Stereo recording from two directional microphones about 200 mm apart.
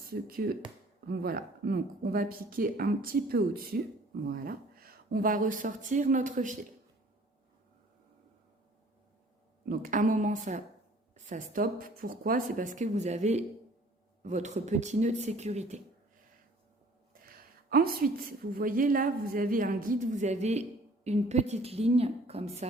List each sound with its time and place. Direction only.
0.1 s a woman's voice: 50° right (ahead or behind)
9.6 s a woman's voice: 40° right (ahead or behind)
17.2 s a woman's voice: 45° right (ahead or behind); by 22.6 s 30° right (ahead or behind)